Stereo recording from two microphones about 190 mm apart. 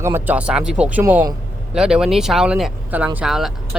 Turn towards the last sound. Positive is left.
turn(degrees=0)  # may be behind; listen again after turning